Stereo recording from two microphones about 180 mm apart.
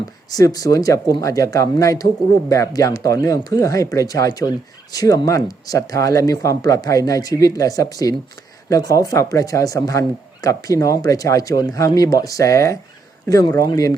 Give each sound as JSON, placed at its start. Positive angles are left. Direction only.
{"t": 0.3, "sound": "a man's voice", "side_deg": 20}